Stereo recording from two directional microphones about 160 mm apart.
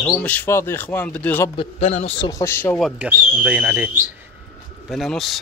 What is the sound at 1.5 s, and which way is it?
Speech, 40° left (ahead or behind).